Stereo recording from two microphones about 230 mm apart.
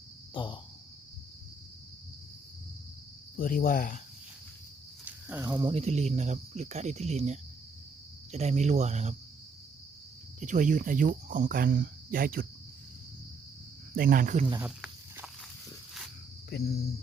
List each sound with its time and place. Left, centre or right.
0.3 s speech: left
3.3 s cricket: left
5.0 s speech: centre; by 9.1 s right
10.4 s speech: right
13.9 s speech: right
14.6 s snake: centre